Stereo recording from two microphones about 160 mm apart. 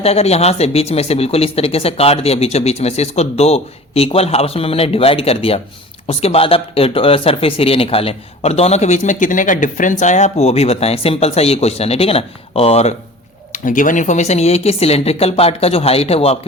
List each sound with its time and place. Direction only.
0.0 s speech: 40° left (ahead or behind)
13.5 s speech: 55° left (ahead or behind); by 16.4 s 40° left (ahead or behind)